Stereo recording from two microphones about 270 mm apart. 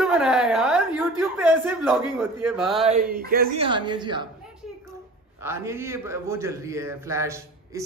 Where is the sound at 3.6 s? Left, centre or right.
Centre.